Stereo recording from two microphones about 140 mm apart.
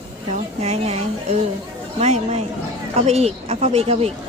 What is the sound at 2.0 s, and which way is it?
Speech, 55° right (ahead or behind).